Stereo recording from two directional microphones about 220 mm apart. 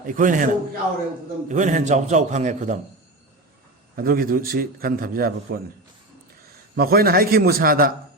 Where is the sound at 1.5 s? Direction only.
35° right (ahead or behind).